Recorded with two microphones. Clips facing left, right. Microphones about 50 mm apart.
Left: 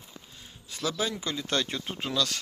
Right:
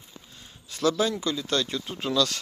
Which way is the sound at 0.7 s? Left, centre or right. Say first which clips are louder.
Right 6 dB; centre.